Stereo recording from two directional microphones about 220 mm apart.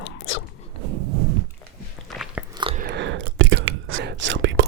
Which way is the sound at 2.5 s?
25° right (ahead or behind).